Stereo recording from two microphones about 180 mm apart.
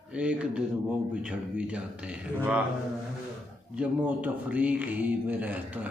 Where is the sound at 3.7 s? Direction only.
10° right (ahead or behind).